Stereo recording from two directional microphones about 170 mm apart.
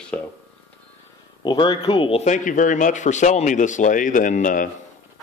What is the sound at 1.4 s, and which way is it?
Speech, 25° left (ahead or behind).